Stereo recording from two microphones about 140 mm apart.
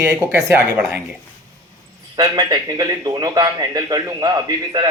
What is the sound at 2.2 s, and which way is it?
Speech, 30° right (ahead or behind).